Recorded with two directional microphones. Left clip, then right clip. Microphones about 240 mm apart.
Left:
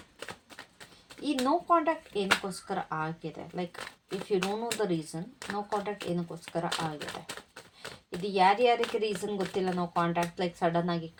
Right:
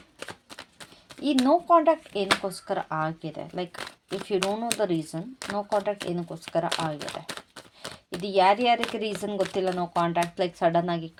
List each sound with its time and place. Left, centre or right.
0.2 s speech: right